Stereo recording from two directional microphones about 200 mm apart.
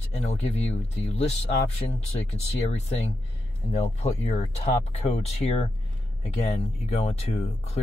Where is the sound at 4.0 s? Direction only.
30° left (ahead or behind).